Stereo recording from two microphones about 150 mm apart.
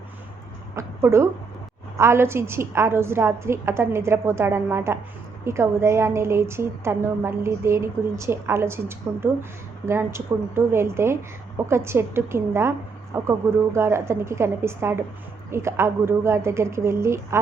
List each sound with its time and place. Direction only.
0.8 s a woman's voice: 20° right (ahead or behind)